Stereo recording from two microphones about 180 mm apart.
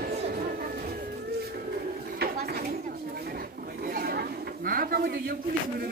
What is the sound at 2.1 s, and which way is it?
Chatter, 60° right (ahead or behind).